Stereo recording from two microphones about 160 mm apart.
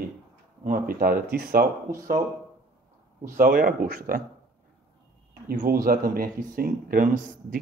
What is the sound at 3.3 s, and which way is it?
Speech, 60° right (ahead or behind).